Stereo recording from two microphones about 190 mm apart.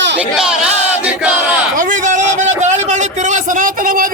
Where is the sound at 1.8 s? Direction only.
45° right (ahead or behind).